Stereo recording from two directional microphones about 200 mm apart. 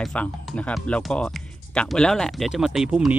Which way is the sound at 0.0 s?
5° left (ahead or behind).